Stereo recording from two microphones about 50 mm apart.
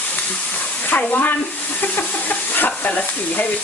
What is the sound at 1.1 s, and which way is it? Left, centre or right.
Speech, left.